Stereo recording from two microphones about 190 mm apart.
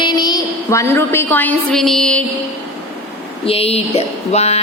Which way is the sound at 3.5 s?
30° left (ahead or behind).